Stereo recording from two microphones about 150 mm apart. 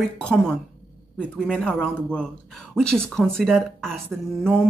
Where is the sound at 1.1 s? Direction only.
10° left (ahead or behind).